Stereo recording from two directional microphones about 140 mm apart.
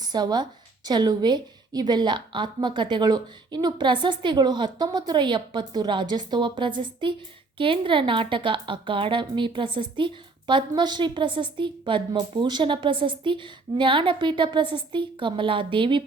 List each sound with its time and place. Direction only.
0.0 s a woman's voice: 30° right (ahead or behind)